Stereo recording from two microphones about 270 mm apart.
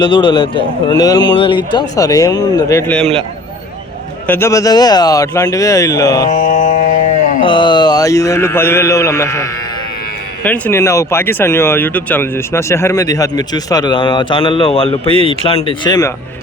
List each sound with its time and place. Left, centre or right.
0.0 s speech: centre
4.3 s speech: centre
6.3 s mantra: left
7.4 s speech: centre
15.0 s speech: right
15.3 s speech: centre